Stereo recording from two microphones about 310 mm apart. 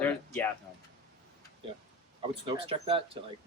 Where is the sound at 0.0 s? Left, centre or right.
Centre.